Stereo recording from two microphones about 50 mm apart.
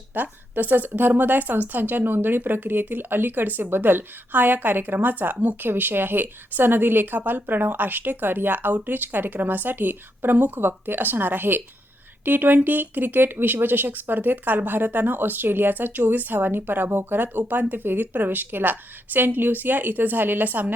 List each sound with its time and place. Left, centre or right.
0.1 s speech: right